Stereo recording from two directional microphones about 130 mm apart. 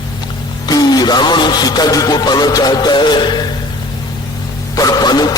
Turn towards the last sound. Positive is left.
turn(degrees=30)  # may be behind; listen again after turning